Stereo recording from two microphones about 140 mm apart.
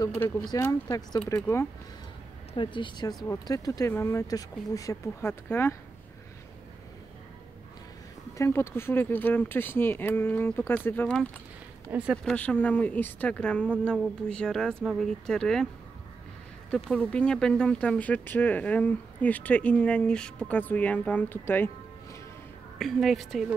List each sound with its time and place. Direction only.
0.0 s speech: 15° left (ahead or behind)
2.5 s a woman's voice: 35° left (ahead or behind); by 5.8 s 15° left (ahead or behind)
8.4 s speech: 20° left (ahead or behind)
11.9 s speech: 10° right (ahead or behind)
12.3 s speech: 10° left (ahead or behind)
16.7 s speech: 10° left (ahead or behind)
22.8 s speech: centre (ahead or behind)